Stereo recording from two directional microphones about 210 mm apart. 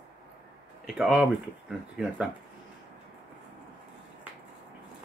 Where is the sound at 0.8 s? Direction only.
5° right (ahead or behind).